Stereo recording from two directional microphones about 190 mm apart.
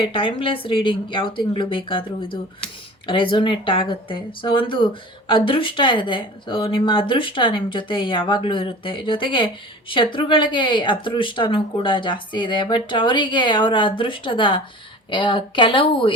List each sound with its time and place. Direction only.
0.0 s speech: 25° left (ahead or behind)